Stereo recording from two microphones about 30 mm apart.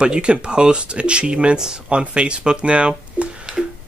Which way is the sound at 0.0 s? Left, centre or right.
Right.